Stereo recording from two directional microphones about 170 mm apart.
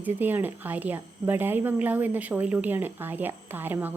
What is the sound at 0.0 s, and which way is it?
A woman's voice, 10° right (ahead or behind).